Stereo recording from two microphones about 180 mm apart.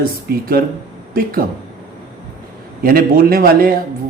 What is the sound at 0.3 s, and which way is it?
Speech, 60° right (ahead or behind).